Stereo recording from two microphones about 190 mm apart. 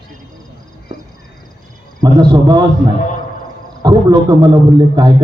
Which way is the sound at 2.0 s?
20° right (ahead or behind).